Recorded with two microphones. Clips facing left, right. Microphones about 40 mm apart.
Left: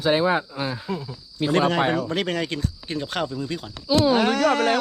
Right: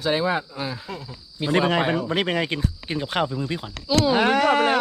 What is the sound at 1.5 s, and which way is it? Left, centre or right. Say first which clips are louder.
Speech: even; centre.